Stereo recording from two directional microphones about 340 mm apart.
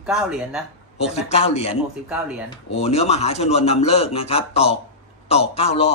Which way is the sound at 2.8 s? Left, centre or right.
Centre.